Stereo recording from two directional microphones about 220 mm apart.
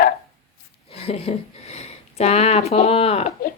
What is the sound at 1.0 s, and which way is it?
Speech, 25° left (ahead or behind).